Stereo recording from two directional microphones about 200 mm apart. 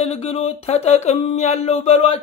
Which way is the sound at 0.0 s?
30° left (ahead or behind).